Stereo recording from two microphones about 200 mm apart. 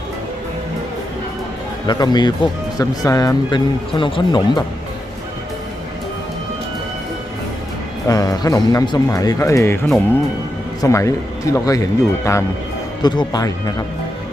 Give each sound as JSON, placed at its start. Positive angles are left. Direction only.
{"t": 1.9, "sound": "speech", "side_deg": 20}
{"t": 8.0, "sound": "speech", "side_deg": 15}